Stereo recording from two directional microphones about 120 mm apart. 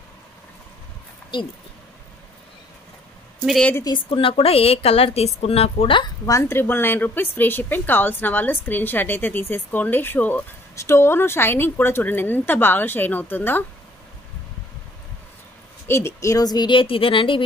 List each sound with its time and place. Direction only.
4.1 s a woman's voice: 50° left (ahead or behind)
6.2 s a woman's voice: 25° left (ahead or behind)
15.9 s speech: 20° left (ahead or behind); by 17.4 s 45° left (ahead or behind)